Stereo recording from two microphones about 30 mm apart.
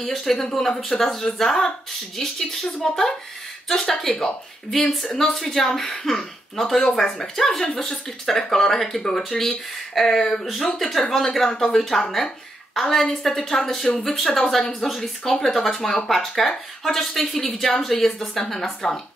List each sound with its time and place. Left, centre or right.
0.0 s speech: centre
7.6 s speech: left
10.1 s speech: left
10.8 s speech: centre